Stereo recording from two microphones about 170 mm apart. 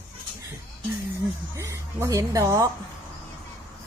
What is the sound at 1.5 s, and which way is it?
A woman's voice, 15° right (ahead or behind).